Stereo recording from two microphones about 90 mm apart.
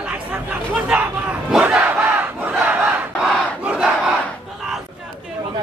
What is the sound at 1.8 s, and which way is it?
Crowd, 20° right (ahead or behind).